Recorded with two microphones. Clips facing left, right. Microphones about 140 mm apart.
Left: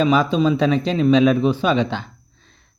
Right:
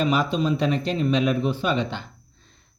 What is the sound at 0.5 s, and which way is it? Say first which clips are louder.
Speech: left 5 dB; 90° left.